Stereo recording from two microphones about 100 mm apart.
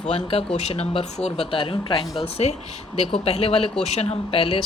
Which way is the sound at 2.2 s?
90° left.